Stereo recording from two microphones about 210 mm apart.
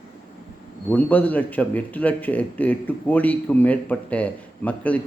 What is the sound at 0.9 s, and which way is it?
Speech, 10° left (ahead or behind).